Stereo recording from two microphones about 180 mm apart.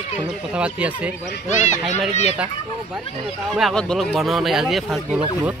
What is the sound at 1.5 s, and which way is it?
Speech, 45° left (ahead or behind).